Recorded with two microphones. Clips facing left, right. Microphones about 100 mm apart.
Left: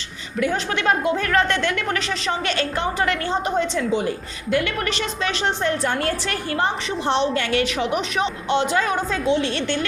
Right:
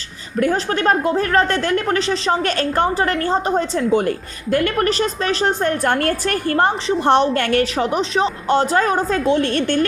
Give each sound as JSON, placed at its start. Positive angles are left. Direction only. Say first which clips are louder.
{"t": 0.3, "sound": "a woman's voice", "louder": "right 4 dB", "side_deg": -40}
{"t": 7.6, "sound": "a woman's voice", "louder": "right 3 dB", "side_deg": -35}